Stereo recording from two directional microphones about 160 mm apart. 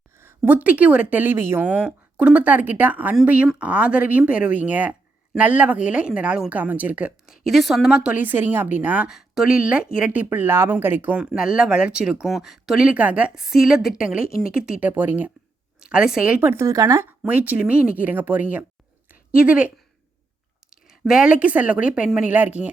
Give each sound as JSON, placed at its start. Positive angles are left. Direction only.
{"t": 0.2, "sound": "speech", "side_deg": -15}
{"t": 14.3, "sound": "speech", "side_deg": 70}
{"t": 14.5, "sound": "speech", "side_deg": -10}
{"t": 21.0, "sound": "speech", "side_deg": -5}